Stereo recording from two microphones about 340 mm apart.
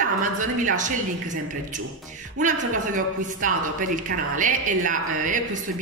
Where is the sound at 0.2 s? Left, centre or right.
Right.